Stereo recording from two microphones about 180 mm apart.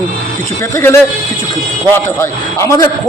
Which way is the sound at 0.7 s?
15° left (ahead or behind).